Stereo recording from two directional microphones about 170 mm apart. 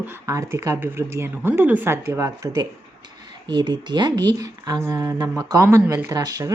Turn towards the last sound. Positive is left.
turn(degrees=-20)  # may be behind; listen again after turning